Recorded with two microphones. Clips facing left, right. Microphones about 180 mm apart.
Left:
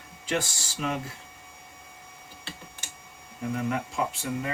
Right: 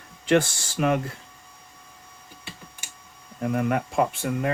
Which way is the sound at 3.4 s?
55° right (ahead or behind).